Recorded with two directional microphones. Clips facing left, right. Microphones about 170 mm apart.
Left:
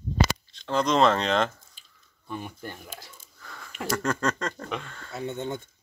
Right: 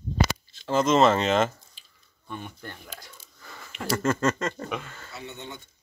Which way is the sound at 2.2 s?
10° left (ahead or behind).